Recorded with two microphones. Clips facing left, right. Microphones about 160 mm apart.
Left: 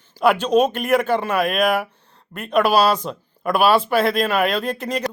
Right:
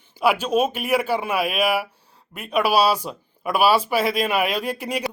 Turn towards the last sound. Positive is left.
turn(degrees=-10)  # may be behind; listen again after turning